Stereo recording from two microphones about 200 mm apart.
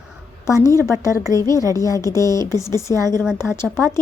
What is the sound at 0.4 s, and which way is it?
Speech, 15° left (ahead or behind).